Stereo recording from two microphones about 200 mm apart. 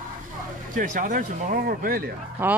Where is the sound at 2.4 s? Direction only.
10° right (ahead or behind).